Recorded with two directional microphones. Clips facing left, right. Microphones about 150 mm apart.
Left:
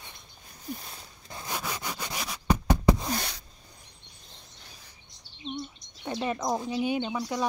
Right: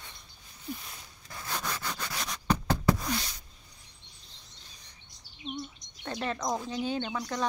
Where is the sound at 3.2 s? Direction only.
70° left (ahead or behind).